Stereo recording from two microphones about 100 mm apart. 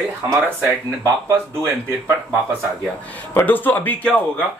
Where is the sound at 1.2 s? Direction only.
25° right (ahead or behind).